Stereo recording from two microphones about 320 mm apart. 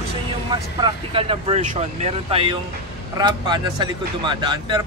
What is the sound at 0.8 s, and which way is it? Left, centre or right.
Speech, centre.